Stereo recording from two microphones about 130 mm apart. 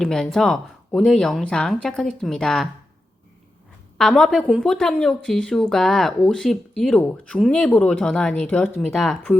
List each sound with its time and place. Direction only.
0.0 s speech: 5° left (ahead or behind)
3.9 s speech: centre (ahead or behind)